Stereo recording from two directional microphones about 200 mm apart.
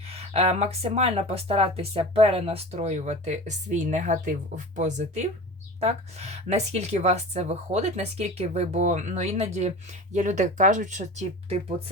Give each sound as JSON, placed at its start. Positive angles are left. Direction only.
{"t": 0.1, "sound": "speech", "side_deg": -30}